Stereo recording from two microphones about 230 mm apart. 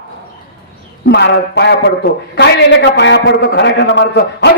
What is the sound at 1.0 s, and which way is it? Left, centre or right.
A man's voice, left.